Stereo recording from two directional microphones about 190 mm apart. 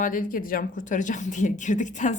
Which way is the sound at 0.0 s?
45° left (ahead or behind).